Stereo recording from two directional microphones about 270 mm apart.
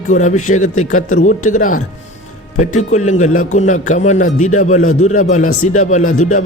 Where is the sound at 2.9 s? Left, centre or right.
Left.